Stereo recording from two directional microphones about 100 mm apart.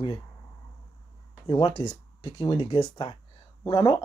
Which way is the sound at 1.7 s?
80° left.